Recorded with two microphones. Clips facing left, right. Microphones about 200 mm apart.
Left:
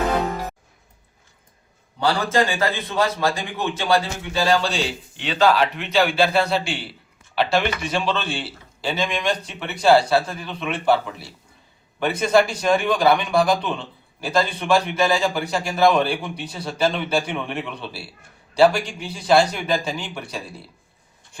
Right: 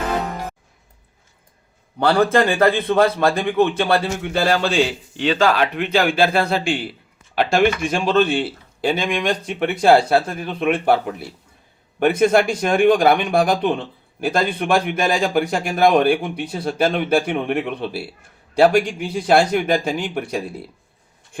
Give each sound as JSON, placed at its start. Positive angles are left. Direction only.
{"t": 2.0, "sound": "a man's voice", "side_deg": -55}